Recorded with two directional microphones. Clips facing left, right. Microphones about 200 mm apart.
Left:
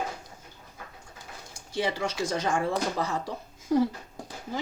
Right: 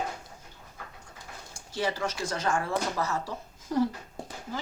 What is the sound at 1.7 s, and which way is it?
Speech, 15° left (ahead or behind).